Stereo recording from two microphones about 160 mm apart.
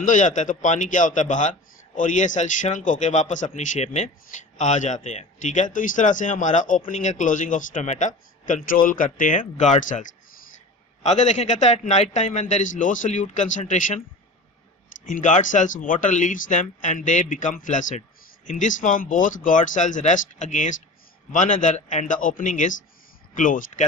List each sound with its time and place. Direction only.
0.0 s speech: 55° left (ahead or behind)
15.0 s speech: 50° left (ahead or behind)